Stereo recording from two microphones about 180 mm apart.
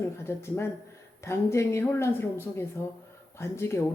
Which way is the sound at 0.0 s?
15° left (ahead or behind).